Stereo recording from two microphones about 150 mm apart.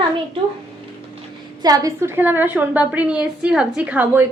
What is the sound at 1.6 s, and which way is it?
A woman's voice, 25° right (ahead or behind).